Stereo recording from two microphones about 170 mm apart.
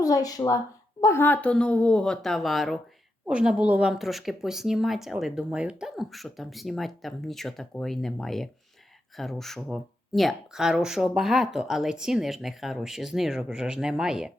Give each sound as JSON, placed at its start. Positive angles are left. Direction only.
{"t": 0.0, "sound": "speech", "side_deg": 20}